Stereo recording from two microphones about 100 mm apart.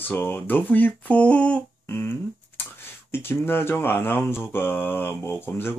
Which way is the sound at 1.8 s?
25° left (ahead or behind).